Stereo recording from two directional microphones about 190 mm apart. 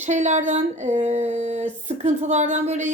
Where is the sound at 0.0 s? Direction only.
40° right (ahead or behind).